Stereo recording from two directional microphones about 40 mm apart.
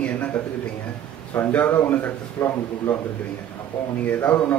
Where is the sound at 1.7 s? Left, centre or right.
Left.